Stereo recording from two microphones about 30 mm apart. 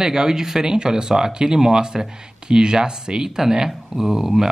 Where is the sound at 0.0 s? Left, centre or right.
Right.